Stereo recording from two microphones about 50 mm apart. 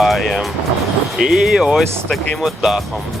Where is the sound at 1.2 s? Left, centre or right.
Centre.